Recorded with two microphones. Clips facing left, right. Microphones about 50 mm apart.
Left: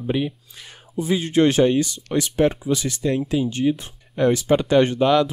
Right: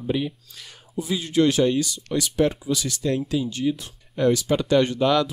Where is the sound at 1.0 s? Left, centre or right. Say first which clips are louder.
Left 3 dB; left; by 5.3 s centre.